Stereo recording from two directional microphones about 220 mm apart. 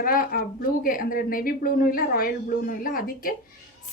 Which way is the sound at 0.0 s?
40° left (ahead or behind).